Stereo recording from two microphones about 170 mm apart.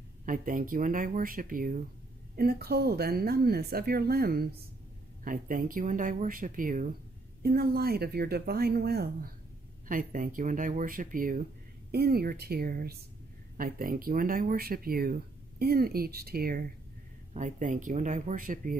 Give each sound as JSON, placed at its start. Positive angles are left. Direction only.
{"t": 0.2, "sound": "speech", "side_deg": -50}
{"t": 2.3, "sound": "a woman's voice", "side_deg": -65}
{"t": 9.8, "sound": "a woman's voice", "side_deg": -50}
{"t": 17.3, "sound": "speech", "side_deg": -50}